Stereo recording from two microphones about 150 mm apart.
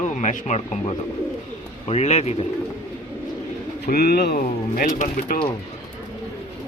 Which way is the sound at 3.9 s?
90° left.